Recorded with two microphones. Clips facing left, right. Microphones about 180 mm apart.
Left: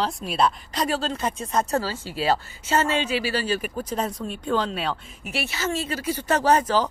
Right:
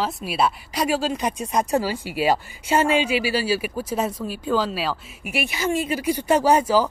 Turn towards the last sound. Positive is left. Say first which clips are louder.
# right 2 dB
turn(degrees=-10)  # may be behind; listen again after turning